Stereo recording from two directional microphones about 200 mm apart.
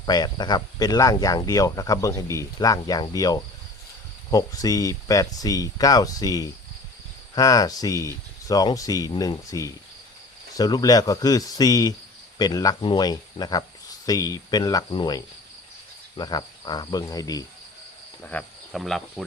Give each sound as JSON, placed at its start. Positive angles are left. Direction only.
{"t": 0.0, "sound": "speech", "side_deg": 20}
{"t": 18.2, "sound": "speech", "side_deg": 5}